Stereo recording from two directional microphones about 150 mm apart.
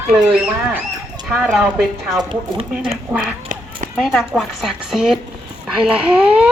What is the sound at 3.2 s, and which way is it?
Duck, 65° right (ahead or behind).